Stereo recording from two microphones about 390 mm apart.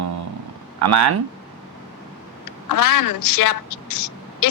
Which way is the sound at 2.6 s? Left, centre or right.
Left.